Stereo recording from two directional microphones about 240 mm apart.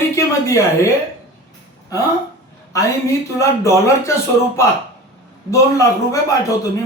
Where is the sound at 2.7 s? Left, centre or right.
Centre.